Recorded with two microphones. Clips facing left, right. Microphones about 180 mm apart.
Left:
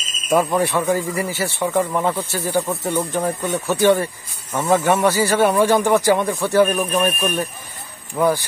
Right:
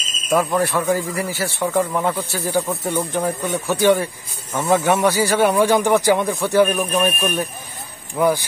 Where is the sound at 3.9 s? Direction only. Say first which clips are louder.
Even; centre (ahead or behind).